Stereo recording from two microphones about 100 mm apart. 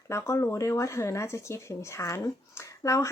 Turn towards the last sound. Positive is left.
turn(degrees=30)  # may be behind; listen again after turning